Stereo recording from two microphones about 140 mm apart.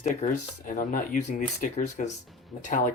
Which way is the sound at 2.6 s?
65° left (ahead or behind).